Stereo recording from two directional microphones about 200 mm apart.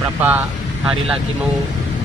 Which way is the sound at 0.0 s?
10° right (ahead or behind).